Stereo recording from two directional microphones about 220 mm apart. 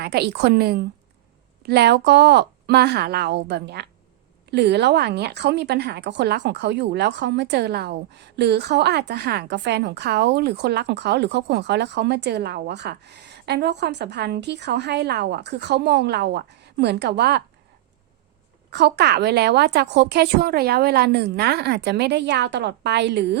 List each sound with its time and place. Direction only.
0.0 s a woman's voice: 50° right (ahead or behind)
18.7 s a woman's voice: 50° right (ahead or behind)